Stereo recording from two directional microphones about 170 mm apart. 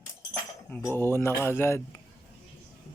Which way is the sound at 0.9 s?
15° left (ahead or behind).